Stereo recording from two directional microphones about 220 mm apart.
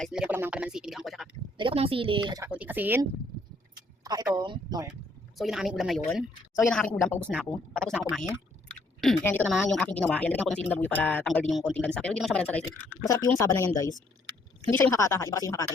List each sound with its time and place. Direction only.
0.0 s speech: 5° right (ahead or behind)
1.5 s speech: 25° right (ahead or behind)
2.5 s speech: 5° right (ahead or behind)
5.4 s speech: centre (ahead or behind); by 15.7 s 15° left (ahead or behind)